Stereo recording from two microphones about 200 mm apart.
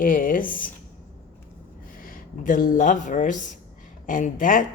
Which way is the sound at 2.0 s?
45° left (ahead or behind).